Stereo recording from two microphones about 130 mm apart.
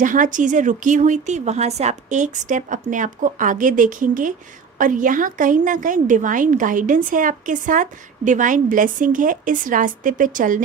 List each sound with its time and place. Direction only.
0.0 s a woman's voice: 90° right